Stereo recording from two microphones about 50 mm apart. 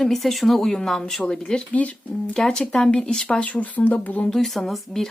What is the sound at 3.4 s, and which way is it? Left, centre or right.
Speech, left.